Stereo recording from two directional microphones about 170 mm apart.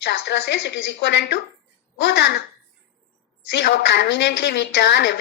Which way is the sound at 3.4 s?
80° left.